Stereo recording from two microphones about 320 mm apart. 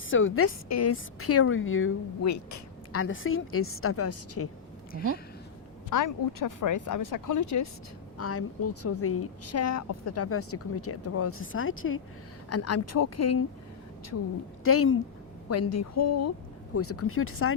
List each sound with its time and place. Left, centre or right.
0.1 s a woman's voice: left
2.2 s speech: left
2.9 s a woman's voice: left
5.9 s speech: left
8.2 s a woman's voice: left
14.6 s a woman's voice: left